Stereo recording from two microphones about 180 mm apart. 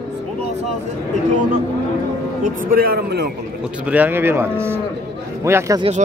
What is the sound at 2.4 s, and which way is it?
Speech, 55° right (ahead or behind).